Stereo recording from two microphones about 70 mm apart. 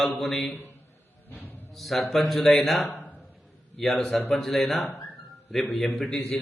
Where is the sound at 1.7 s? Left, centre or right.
Centre.